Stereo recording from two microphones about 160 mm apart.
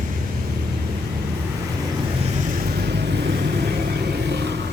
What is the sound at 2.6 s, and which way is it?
Vehicle, 85° right.